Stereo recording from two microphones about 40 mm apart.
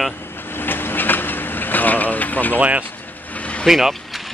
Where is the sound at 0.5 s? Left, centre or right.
Left.